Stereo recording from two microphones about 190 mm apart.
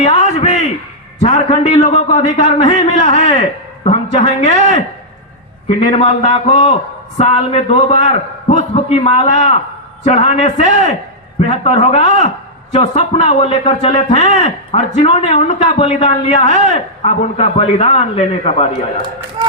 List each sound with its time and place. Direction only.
0.0 s a sound: 35° left (ahead or behind)
1.2 s a man's voice: 35° left (ahead or behind)
19.4 s speech: 20° right (ahead or behind)